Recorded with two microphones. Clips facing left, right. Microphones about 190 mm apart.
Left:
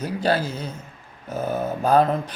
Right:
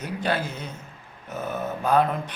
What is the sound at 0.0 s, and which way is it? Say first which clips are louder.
Speech: left 4 dB; 35° left (ahead or behind).